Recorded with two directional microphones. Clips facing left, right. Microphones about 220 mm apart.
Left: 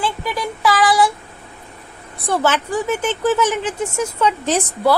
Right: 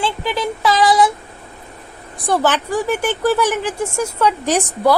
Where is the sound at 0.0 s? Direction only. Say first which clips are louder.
Right 2 dB; 25° right (ahead or behind).